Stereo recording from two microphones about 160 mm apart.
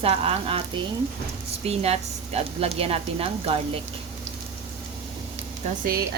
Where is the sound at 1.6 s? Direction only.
40° right (ahead or behind).